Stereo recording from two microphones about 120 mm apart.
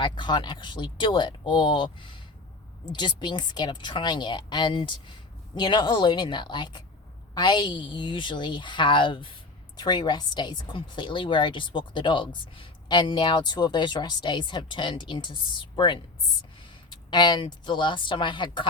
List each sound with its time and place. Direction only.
0.0 s a woman's voice: 40° left (ahead or behind)